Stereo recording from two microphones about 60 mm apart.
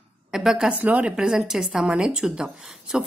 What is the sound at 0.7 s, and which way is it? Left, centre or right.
Speech, right.